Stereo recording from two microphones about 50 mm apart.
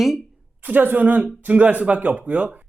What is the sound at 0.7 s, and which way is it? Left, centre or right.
Speech, right.